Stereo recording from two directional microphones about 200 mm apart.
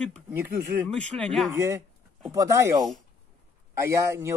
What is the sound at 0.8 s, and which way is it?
Speech, 5° left (ahead or behind).